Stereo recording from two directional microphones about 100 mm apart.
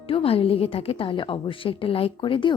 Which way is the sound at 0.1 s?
70° left (ahead or behind).